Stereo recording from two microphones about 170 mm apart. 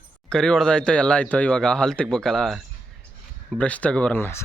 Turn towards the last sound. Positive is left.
turn(degrees=15)  # may be behind; listen again after turning